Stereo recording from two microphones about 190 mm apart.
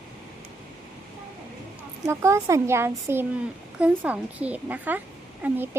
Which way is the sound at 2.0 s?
15° right (ahead or behind).